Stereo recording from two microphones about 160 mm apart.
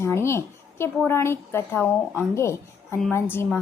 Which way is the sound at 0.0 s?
15° left (ahead or behind).